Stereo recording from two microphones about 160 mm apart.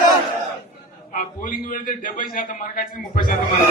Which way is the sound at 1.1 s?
60° left (ahead or behind).